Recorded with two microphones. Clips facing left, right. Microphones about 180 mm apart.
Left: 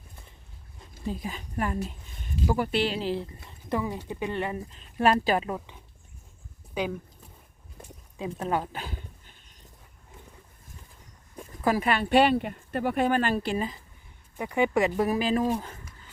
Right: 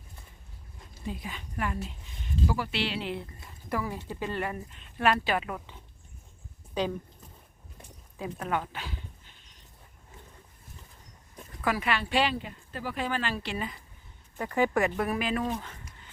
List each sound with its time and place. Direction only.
1.0 s speech: 40° left (ahead or behind)
3.7 s speech: 20° left (ahead or behind)
5.5 s speech: 15° left (ahead or behind)
8.2 s speech: 25° left (ahead or behind)
8.5 s dog: 40° left (ahead or behind)
11.6 s speech: 40° left (ahead or behind)
14.3 s speech: 15° left (ahead or behind)
15.1 s speech: 30° left (ahead or behind)